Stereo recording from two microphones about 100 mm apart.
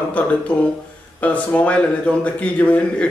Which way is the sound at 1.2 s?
15° left (ahead or behind).